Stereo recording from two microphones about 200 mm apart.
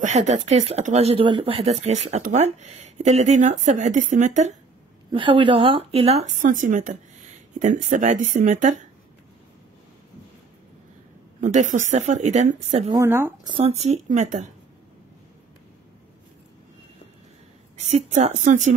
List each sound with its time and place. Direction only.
0.0 s speech: 35° right (ahead or behind)
5.1 s speech: 25° right (ahead or behind)
11.4 s speech: 40° right (ahead or behind)
12.9 s speech: 10° right (ahead or behind)
13.6 s speech: 30° right (ahead or behind)
17.7 s speech: 35° right (ahead or behind)